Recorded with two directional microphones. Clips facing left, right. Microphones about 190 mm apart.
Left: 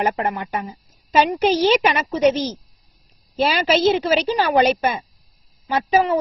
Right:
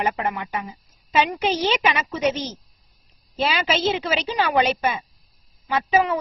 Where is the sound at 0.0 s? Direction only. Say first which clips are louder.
Left 3 dB; 45° left (ahead or behind).